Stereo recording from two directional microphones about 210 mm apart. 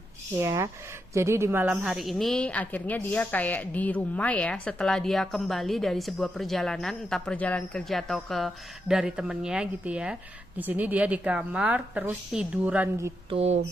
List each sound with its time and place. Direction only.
0.3 s a woman's voice: 15° right (ahead or behind)
13.3 s speech: 30° right (ahead or behind)